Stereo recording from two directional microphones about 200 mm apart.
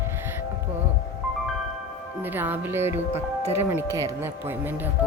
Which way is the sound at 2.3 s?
10° right (ahead or behind).